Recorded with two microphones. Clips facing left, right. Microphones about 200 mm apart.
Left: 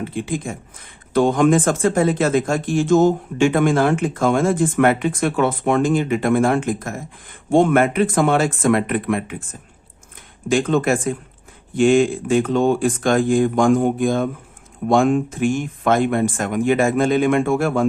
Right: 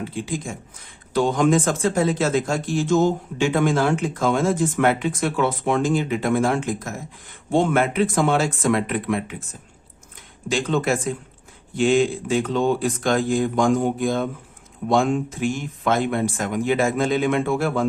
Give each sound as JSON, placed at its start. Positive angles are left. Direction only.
{"t": 0.1, "sound": "speech", "side_deg": 60}
{"t": 10.5, "sound": "speech", "side_deg": 50}